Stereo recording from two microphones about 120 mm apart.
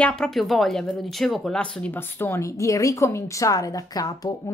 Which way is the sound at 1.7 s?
15° left (ahead or behind).